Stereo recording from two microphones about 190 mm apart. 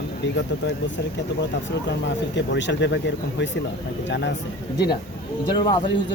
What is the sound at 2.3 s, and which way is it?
Speech, 70° left (ahead or behind).